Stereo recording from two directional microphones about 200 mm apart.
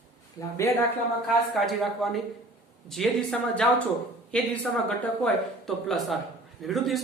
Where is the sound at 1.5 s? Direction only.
Centre (ahead or behind).